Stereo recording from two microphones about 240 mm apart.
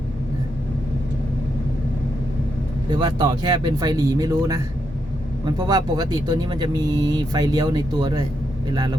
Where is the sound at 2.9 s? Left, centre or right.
Centre.